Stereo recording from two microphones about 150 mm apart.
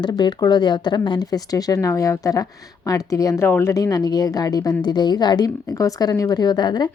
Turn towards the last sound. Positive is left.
turn(degrees=30)  # may be behind; listen again after turning